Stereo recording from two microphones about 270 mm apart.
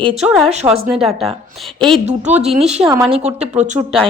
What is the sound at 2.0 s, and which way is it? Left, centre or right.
Speech, right.